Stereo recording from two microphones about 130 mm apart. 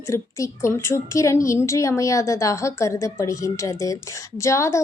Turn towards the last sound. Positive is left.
turn(degrees=25)  # may be behind; listen again after turning